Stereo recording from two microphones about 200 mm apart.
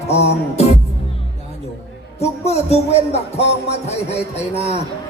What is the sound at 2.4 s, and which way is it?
Speech, 30° left (ahead or behind).